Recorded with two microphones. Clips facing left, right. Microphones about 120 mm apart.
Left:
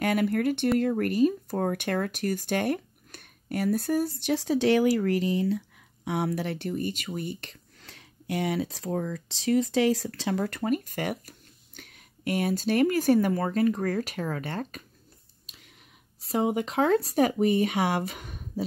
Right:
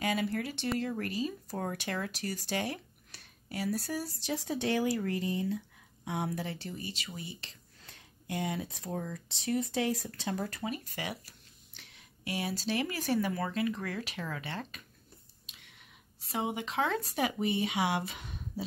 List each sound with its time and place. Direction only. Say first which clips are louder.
0.0 s speech: left 8 dB; 60° left (ahead or behind)
4.2 s speech: left 9 dB; 80° left
6.0 s speech: left 7 dB; 80° left; by 7.5 s 55° left (ahead or behind)
7.8 s speech: left 7 dB; 90° left
10.6 s speech: left 9 dB; 50° left (ahead or behind)
15.4 s a sound: left 3 dB; 40° left (ahead or behind)
16.2 s speech: left 8 dB; 40° left (ahead or behind)